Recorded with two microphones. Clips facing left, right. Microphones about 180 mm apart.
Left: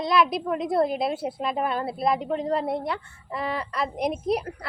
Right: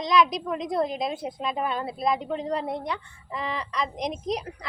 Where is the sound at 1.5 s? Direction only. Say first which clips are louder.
Left 2 dB; 35° left (ahead or behind).